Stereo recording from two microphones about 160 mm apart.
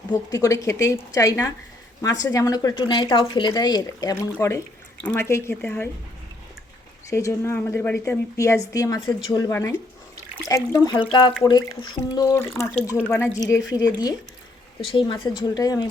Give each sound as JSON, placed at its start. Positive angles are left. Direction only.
{"t": 0.3, "sound": "speech", "side_deg": 20}
{"t": 7.1, "sound": "speech", "side_deg": 20}